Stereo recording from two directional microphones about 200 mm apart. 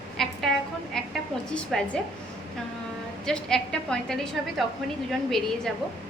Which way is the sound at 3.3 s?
5° left (ahead or behind).